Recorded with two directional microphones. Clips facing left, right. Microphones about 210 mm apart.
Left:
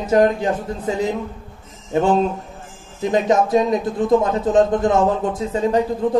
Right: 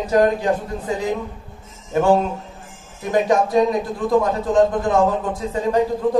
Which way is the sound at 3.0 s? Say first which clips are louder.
Left 1 dB; 20° left (ahead or behind).